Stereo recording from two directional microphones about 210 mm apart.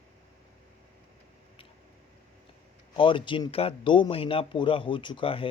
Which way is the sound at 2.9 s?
25° left (ahead or behind).